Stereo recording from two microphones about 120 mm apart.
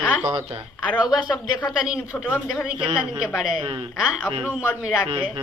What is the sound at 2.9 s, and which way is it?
Speech, 5° right (ahead or behind).